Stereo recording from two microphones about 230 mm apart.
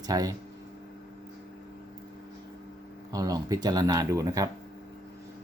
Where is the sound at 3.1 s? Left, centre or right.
Centre.